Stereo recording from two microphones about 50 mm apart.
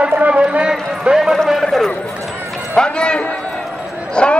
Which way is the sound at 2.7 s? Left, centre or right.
Centre.